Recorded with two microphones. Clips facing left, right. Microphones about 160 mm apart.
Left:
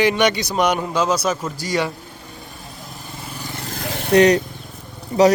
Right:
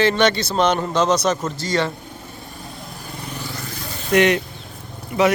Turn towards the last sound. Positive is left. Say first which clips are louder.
# left 4 dB
turn(degrees=35)  # may be behind; listen again after turning